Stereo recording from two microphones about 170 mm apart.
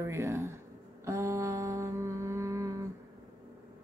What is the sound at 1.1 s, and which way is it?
Mantra, 15° right (ahead or behind).